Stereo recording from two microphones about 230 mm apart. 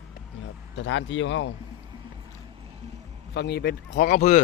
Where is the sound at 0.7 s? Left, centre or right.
Left.